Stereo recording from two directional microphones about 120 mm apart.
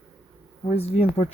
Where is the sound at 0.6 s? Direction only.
55° left (ahead or behind).